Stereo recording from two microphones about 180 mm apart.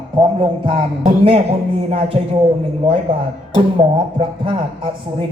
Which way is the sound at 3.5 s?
30° right (ahead or behind).